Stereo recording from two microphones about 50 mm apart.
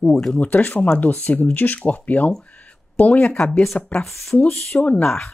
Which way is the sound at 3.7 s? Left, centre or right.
Left.